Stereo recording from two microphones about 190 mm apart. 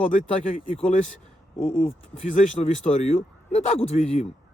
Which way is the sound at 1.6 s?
45° left (ahead or behind).